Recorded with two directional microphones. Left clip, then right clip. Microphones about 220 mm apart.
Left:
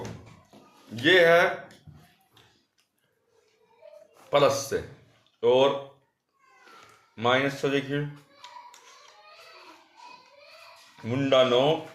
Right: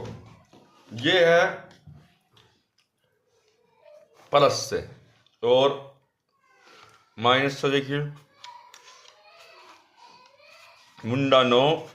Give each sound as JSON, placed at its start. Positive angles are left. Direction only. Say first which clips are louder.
{"t": 0.9, "sound": "speech", "louder": "even", "side_deg": 0}
{"t": 4.3, "sound": "speech", "louder": "right 2 dB", "side_deg": -15}
{"t": 7.2, "sound": "a sound", "louder": "right 3 dB", "side_deg": -20}
{"t": 11.0, "sound": "speech", "louder": "right 2 dB", "side_deg": -25}